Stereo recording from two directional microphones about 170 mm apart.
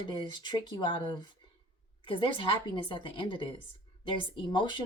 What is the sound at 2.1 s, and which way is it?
Speech, 30° left (ahead or behind).